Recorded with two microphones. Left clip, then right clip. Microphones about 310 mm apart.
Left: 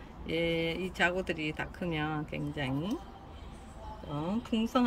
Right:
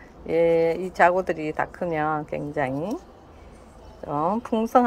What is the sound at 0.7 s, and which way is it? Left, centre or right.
Speech, right.